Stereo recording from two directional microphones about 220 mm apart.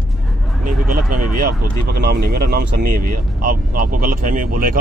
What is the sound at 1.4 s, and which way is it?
Speech, 45° right (ahead or behind).